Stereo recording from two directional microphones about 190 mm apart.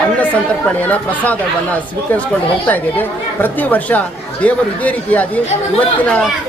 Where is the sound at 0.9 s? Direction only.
10° left (ahead or behind).